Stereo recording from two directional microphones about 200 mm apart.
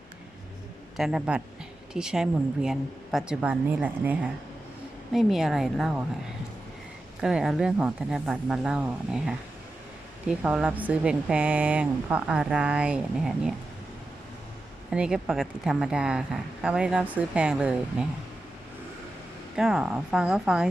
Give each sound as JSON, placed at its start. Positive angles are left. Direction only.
{"t": 0.9, "sound": "speech", "side_deg": 0}
{"t": 7.2, "sound": "speech", "side_deg": -5}
{"t": 14.8, "sound": "speech", "side_deg": -5}
{"t": 19.5, "sound": "speech", "side_deg": 0}